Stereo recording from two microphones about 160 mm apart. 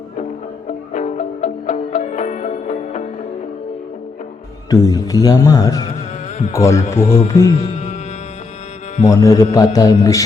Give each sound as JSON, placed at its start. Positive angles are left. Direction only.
{"t": 0.9, "sound": "music", "side_deg": 45}
{"t": 4.7, "sound": "mantra", "side_deg": 25}
{"t": 6.5, "sound": "a man's voice", "side_deg": 20}
{"t": 7.0, "sound": "speech", "side_deg": 35}
{"t": 7.3, "sound": "mantra", "side_deg": 20}
{"t": 9.0, "sound": "mantra", "side_deg": 20}